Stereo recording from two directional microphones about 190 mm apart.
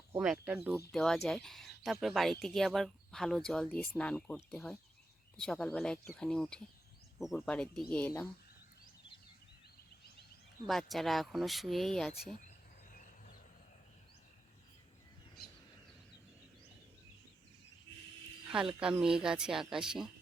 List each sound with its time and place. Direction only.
0.1 s speech: 5° right (ahead or behind)
10.7 s speech: centre (ahead or behind)
12.9 s a sound: 45° left (ahead or behind)
18.4 s speech: 5° right (ahead or behind)